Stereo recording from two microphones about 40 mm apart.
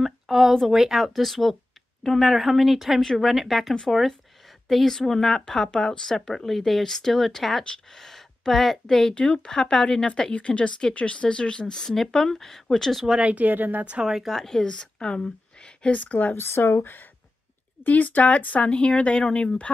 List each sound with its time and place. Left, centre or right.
0.0 s a sound: centre
0.7 s speech: centre
3.0 s speech: centre
3.3 s speech: centre
9.1 s speech: left; by 13.0 s centre
13.2 s speech: right
13.5 s speech: right
14.0 s speech: centre
14.3 s speech: centre
14.7 s speech: left
15.9 s speech: left
16.3 s speech: left
17.8 s speech: left